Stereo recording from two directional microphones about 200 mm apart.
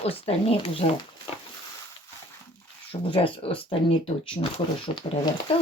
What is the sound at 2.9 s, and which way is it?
Speech, 25° left (ahead or behind).